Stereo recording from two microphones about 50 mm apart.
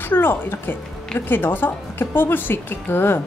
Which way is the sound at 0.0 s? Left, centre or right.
Left.